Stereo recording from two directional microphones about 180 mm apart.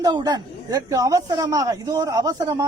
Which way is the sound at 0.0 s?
20° right (ahead or behind).